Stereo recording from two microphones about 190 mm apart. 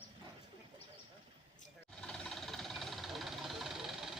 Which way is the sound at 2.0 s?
5° left (ahead or behind).